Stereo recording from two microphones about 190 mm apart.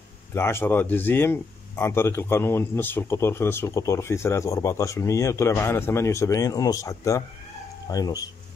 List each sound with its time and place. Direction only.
0.3 s speech: 10° left (ahead or behind)